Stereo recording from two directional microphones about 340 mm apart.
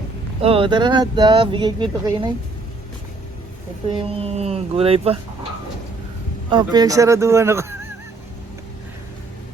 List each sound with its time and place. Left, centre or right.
0.4 s speech: centre
3.9 s speech: centre
6.5 s speech: centre